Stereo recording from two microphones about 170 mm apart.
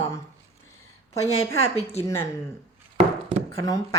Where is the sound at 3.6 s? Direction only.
20° left (ahead or behind).